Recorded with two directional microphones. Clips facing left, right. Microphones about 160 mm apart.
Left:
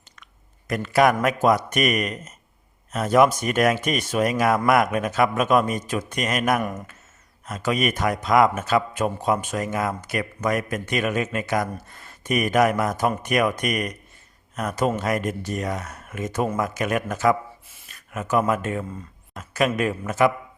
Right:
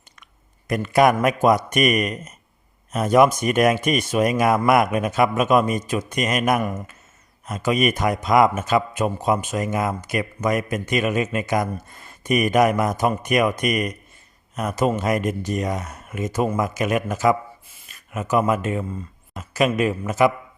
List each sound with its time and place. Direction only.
0.7 s speech: 15° right (ahead or behind)